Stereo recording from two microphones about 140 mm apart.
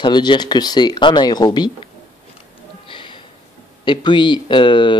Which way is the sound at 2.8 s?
35° left (ahead or behind).